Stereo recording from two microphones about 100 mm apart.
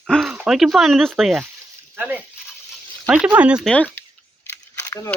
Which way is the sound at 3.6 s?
10° left (ahead or behind).